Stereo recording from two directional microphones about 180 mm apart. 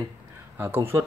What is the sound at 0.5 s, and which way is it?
Speech, 15° right (ahead or behind).